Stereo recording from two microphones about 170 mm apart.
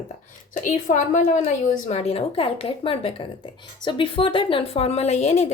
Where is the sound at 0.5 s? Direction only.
45° left (ahead or behind).